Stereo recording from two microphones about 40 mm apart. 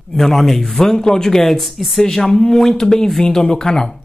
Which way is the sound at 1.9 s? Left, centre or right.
Centre.